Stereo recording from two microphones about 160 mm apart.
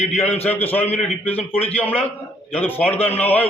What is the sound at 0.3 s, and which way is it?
A man's voice, 10° left (ahead or behind).